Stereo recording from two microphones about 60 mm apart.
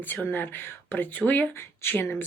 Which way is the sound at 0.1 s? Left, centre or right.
Left.